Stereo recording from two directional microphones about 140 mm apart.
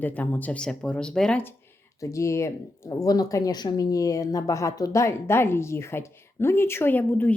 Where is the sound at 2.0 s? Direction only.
20° left (ahead or behind).